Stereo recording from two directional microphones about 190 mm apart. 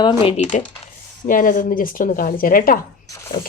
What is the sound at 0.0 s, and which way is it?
Speech, 30° left (ahead or behind).